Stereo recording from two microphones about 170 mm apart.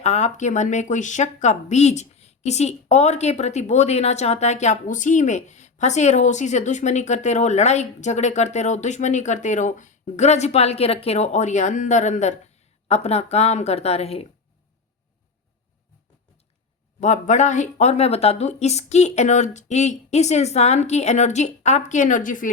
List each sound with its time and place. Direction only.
0.0 s a woman's voice: 40° left (ahead or behind)
17.0 s a woman's voice: 45° left (ahead or behind)